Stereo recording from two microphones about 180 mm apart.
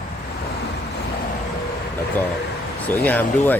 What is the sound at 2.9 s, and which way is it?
Speech, 10° left (ahead or behind).